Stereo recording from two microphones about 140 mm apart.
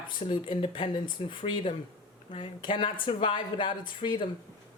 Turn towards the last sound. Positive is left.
turn(degrees=35)  # may be behind; listen again after turning